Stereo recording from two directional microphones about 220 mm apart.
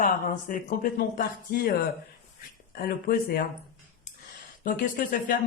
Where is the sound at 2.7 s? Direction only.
40° left (ahead or behind).